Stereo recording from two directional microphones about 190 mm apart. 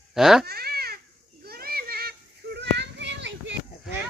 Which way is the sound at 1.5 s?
55° right (ahead or behind).